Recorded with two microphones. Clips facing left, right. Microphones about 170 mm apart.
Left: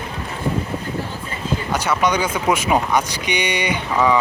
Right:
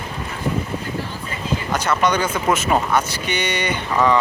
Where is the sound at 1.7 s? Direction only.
10° left (ahead or behind).